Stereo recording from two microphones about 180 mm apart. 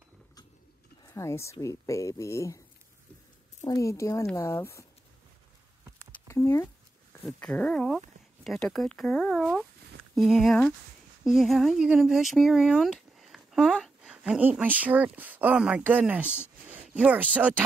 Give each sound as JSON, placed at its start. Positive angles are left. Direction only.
{"t": 1.1, "sound": "speech", "side_deg": 15}
{"t": 3.6, "sound": "speech", "side_deg": 20}
{"t": 6.2, "sound": "a sound", "side_deg": 15}
{"t": 7.3, "sound": "speech", "side_deg": 5}